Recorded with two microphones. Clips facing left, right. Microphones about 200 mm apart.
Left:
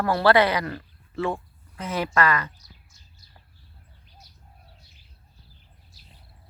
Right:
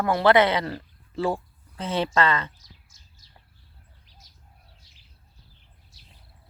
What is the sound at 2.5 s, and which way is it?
Bird, 90° right.